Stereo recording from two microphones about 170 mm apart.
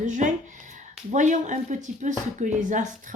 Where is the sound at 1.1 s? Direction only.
45° right (ahead or behind).